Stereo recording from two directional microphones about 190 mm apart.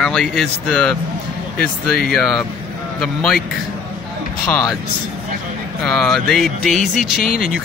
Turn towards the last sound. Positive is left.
turn(degrees=0)  # may be behind; listen again after turning